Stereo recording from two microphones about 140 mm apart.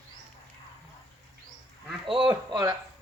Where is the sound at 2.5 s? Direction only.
30° right (ahead or behind).